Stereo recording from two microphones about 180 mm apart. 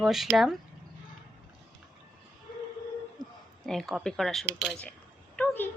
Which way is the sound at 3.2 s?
20° right (ahead or behind).